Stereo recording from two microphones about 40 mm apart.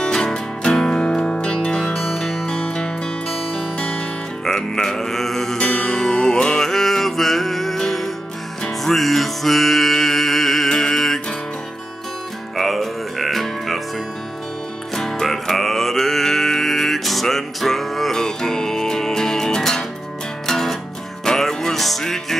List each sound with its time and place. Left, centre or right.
0.0 s music: centre
4.5 s music: centre
5.6 s music: centre
12.5 s music: centre
15.0 s music: centre